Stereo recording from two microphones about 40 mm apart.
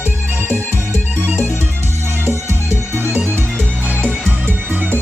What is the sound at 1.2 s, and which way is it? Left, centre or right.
Music, right.